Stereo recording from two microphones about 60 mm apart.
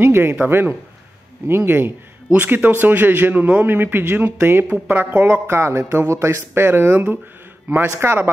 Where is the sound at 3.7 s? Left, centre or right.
Right.